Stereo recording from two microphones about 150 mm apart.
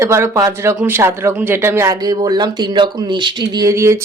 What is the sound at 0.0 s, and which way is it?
A man's voice, 20° right (ahead or behind).